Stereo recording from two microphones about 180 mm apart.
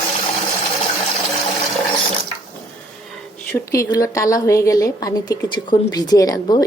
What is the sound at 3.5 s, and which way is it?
A woman's voice, 20° left (ahead or behind).